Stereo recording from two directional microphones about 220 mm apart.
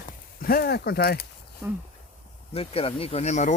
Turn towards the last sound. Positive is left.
turn(degrees=30)  # may be behind; listen again after turning